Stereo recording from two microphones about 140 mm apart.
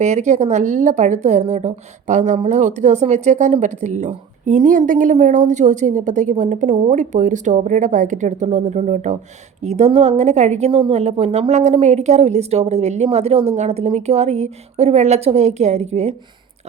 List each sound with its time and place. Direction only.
0.0 s a woman's voice: 55° right (ahead or behind)